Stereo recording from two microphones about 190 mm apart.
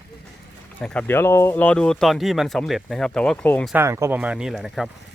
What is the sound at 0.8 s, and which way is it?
Speech, 5° left (ahead or behind).